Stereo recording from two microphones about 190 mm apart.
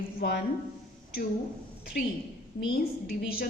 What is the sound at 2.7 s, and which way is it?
Speech, 55° left (ahead or behind).